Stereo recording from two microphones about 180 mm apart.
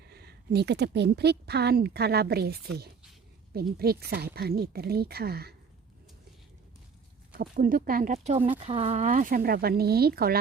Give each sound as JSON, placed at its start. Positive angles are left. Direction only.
{"t": 0.0, "sound": "speech", "side_deg": -65}
{"t": 7.3, "sound": "speech", "side_deg": -50}